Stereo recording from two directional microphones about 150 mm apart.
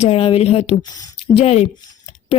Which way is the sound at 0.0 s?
40° left (ahead or behind).